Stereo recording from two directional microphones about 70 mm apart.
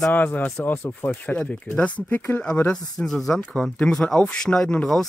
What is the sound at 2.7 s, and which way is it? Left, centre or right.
Speech, centre.